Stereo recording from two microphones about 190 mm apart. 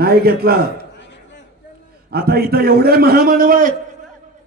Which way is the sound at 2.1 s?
55° right (ahead or behind).